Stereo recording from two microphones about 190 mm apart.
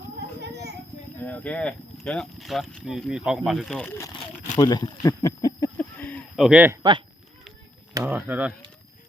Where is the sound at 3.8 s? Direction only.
10° left (ahead or behind).